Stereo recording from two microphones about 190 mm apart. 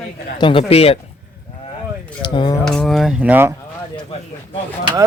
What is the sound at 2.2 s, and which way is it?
Speech, 25° left (ahead or behind).